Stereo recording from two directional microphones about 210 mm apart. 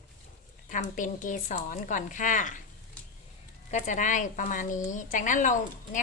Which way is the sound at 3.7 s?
35° left (ahead or behind).